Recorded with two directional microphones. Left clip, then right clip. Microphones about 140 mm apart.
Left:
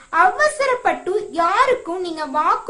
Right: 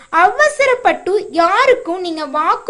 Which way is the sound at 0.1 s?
30° right (ahead or behind).